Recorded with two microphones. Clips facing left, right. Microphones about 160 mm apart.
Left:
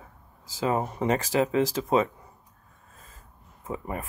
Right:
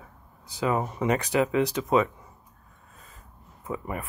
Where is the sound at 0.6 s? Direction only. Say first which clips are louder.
Even; 30° left (ahead or behind).